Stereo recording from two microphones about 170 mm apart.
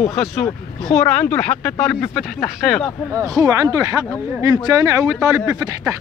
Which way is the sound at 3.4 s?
20° right (ahead or behind).